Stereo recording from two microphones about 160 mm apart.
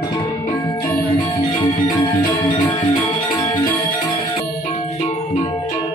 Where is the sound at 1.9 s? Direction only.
20° left (ahead or behind).